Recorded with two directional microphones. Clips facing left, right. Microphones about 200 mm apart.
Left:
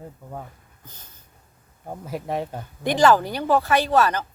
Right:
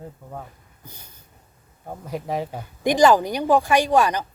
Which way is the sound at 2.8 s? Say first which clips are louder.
Right 2 dB; 15° right (ahead or behind).